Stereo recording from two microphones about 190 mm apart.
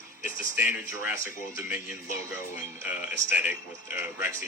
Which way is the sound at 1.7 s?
40° left (ahead or behind).